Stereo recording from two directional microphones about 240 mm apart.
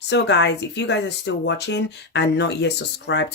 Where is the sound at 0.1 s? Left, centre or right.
Left.